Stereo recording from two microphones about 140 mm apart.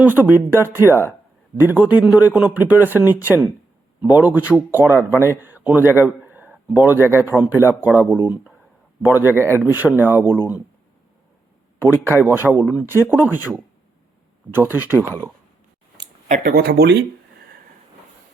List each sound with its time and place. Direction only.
0.0 s a man's voice: 15° right (ahead or behind)
12.2 s speech: 15° right (ahead or behind)
14.5 s speech: 15° right (ahead or behind)
16.3 s speech: 90° right